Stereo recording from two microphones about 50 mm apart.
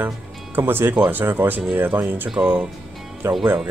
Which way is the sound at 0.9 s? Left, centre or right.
Right.